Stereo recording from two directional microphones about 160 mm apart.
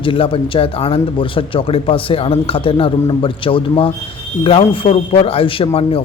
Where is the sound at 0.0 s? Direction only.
35° left (ahead or behind).